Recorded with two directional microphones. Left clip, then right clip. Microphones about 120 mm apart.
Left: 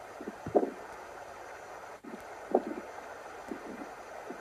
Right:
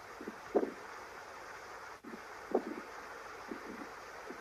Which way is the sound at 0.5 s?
15° left (ahead or behind).